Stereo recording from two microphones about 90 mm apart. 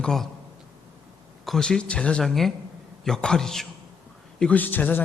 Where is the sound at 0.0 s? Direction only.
5° left (ahead or behind).